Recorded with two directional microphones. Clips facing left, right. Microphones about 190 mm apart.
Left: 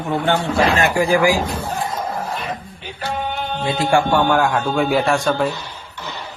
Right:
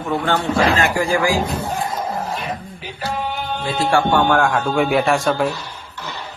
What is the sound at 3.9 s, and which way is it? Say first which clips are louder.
A man's voice: even; 10° left (ahead or behind).